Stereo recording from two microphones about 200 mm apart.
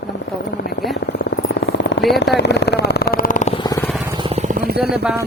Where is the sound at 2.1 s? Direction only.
60° left (ahead or behind); by 3.5 s 40° left (ahead or behind).